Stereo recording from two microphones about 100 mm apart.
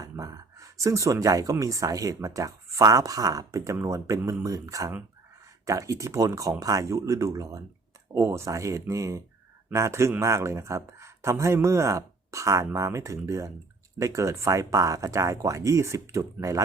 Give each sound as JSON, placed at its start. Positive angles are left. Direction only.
{"t": 0.0, "sound": "speech", "side_deg": -35}